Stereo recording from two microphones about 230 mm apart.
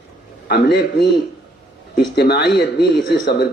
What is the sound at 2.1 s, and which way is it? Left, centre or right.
A man's voice, left.